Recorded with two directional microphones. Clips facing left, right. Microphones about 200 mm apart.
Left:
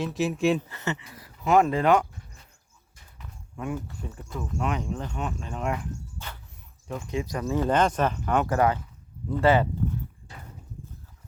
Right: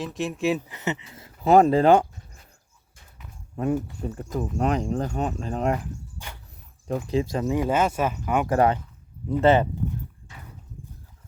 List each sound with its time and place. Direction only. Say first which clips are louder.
0.0 s speech: left 2 dB; centre (ahead or behind)
0.7 s speech: right 2 dB; 20° right (ahead or behind)
3.5 s speech: right 7 dB; 40° right (ahead or behind)
6.1 s music: even; 15° right (ahead or behind)
6.8 s speech: right 6 dB; 35° right (ahead or behind)
7.5 s speech: left 1 dB; 10° right (ahead or behind)
8.4 s speech: right 3 dB; 30° right (ahead or behind)